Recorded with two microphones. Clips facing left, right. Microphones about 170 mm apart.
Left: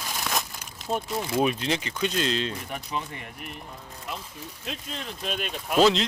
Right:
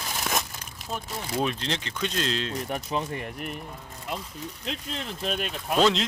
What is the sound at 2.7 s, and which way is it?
Speech, 35° right (ahead or behind).